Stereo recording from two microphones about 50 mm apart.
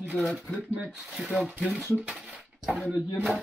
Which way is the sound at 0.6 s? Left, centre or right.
Right.